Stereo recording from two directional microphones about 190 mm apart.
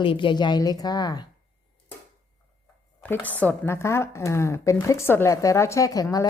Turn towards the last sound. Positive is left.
turn(degrees=20)  # may be behind; listen again after turning